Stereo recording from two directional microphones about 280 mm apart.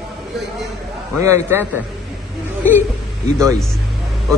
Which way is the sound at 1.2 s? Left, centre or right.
Centre.